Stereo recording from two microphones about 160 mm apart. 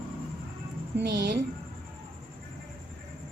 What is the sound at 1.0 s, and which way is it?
Speech, 90° right.